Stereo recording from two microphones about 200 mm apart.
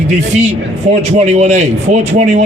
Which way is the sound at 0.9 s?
35° right (ahead or behind).